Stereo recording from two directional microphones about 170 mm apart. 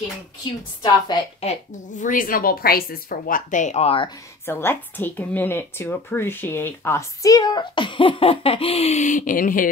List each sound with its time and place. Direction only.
1.4 s a woman's voice: 45° left (ahead or behind)
4.5 s a woman's voice: 15° left (ahead or behind); by 9.7 s 55° left (ahead or behind)